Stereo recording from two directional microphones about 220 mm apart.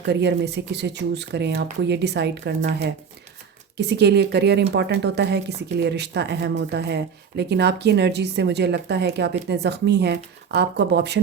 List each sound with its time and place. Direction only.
0.0 s speech: 50° right (ahead or behind)
3.8 s speech: 50° right (ahead or behind)